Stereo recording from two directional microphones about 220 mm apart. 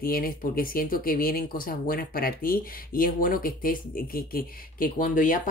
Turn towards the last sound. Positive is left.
turn(degrees=35)  # may be behind; listen again after turning